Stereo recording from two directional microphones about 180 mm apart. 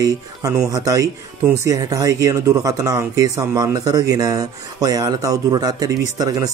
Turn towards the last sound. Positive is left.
turn(degrees=-20)  # may be behind; listen again after turning